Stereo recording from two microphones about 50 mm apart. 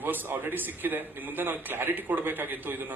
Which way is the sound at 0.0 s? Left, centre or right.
Right.